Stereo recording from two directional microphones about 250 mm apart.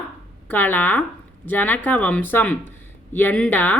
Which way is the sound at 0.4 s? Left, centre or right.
Centre.